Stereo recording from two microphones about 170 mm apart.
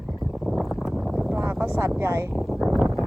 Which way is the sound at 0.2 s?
Centre (ahead or behind).